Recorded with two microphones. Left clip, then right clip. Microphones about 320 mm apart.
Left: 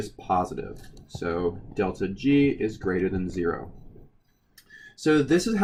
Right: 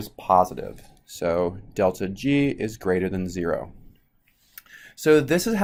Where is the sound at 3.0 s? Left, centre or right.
Centre.